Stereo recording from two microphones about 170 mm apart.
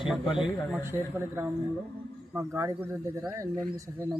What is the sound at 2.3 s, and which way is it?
A man's voice, 15° right (ahead or behind).